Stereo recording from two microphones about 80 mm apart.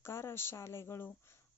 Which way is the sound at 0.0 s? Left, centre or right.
Left.